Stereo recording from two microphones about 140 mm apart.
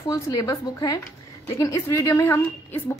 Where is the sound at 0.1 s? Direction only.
25° left (ahead or behind).